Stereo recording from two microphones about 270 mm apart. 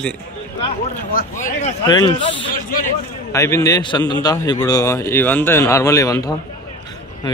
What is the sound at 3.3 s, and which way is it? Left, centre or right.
Speech, centre.